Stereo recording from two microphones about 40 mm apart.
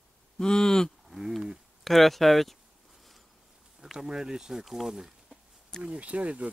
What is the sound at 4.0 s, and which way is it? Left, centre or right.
Speech, centre.